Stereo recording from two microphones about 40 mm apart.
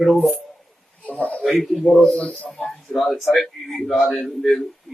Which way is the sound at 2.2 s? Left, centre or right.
Left.